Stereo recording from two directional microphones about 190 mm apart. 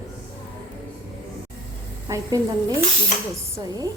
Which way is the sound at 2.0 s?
20° right (ahead or behind).